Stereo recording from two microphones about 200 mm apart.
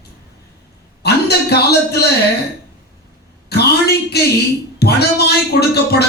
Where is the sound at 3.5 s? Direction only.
55° left (ahead or behind).